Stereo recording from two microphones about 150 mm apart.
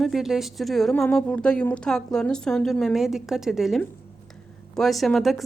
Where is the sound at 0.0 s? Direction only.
Centre (ahead or behind).